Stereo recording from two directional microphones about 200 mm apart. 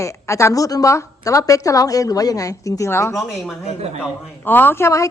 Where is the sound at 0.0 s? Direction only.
15° left (ahead or behind).